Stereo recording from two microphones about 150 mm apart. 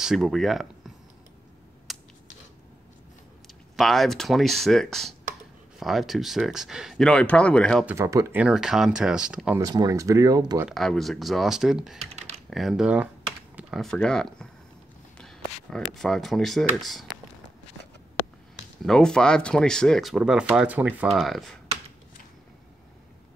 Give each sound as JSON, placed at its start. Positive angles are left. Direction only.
{"t": 0.0, "sound": "speech", "side_deg": 0}
{"t": 1.9, "sound": "a sound", "side_deg": 0}
{"t": 3.4, "sound": "speech", "side_deg": 0}
{"t": 7.8, "sound": "speech", "side_deg": -15}
{"t": 8.4, "sound": "speech", "side_deg": -5}
{"t": 9.6, "sound": "speech", "side_deg": -25}
{"t": 10.7, "sound": "speech", "side_deg": 0}
{"t": 13.6, "sound": "computer keyboard", "side_deg": 0}
{"t": 13.9, "sound": "speech", "side_deg": 5}
{"t": 15.7, "sound": "speech", "side_deg": 0}
{"t": 18.9, "sound": "speech", "side_deg": 5}
{"t": 21.2, "sound": "speech", "side_deg": 0}